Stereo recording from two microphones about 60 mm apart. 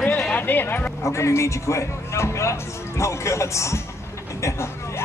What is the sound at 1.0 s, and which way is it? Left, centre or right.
Speech, left.